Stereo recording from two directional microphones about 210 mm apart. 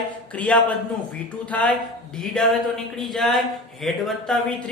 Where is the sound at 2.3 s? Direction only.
Centre (ahead or behind).